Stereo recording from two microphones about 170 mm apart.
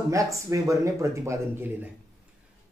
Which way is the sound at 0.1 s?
20° right (ahead or behind).